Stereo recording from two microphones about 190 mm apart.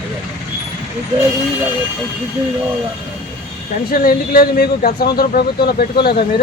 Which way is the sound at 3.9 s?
50° left (ahead or behind).